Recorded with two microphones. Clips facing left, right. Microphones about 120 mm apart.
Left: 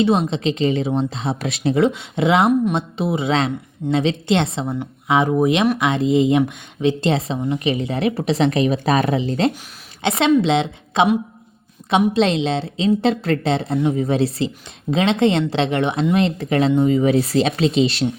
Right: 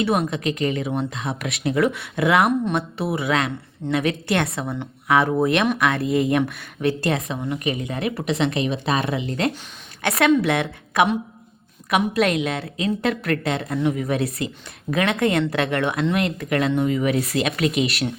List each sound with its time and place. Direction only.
0.0 s a woman's voice: 25° left (ahead or behind)